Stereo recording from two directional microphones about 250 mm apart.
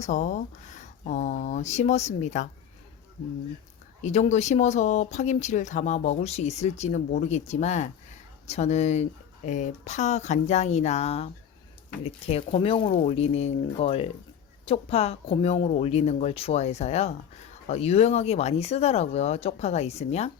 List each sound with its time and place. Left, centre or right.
0.0 s speech: left
4.0 s speech: left